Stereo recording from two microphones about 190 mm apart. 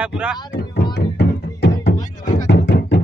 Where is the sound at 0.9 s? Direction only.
60° left (ahead or behind).